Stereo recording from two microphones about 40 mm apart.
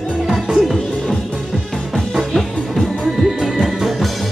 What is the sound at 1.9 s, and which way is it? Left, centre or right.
Music, centre.